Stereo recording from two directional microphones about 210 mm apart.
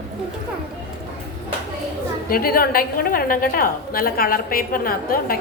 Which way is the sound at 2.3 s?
45° left (ahead or behind).